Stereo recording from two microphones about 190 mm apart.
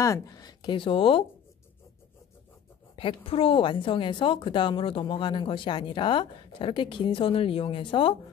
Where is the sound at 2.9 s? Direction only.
30° left (ahead or behind).